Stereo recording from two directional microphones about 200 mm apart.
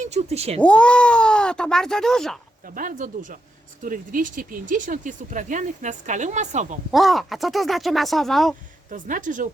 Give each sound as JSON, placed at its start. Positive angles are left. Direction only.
{"t": 0.0, "sound": "speech", "side_deg": -35}
{"t": 0.6, "sound": "speech", "side_deg": 5}
{"t": 2.6, "sound": "speech", "side_deg": -45}
{"t": 6.9, "sound": "speech", "side_deg": 0}
{"t": 8.9, "sound": "speech", "side_deg": -40}